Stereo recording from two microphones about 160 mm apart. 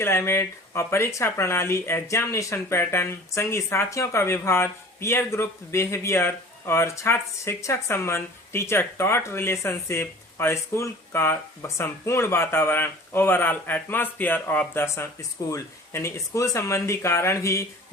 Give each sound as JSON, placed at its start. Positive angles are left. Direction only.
{"t": 0.0, "sound": "speech", "side_deg": 15}